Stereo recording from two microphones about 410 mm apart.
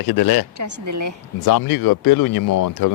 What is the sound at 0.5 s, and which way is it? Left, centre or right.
Speech, right.